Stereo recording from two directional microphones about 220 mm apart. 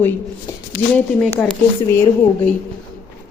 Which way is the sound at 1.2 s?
5° left (ahead or behind).